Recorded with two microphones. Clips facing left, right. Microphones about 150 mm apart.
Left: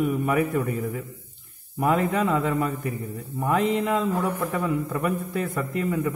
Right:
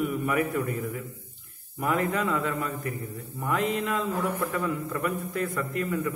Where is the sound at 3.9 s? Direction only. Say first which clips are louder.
Left 3 dB; 20° left (ahead or behind).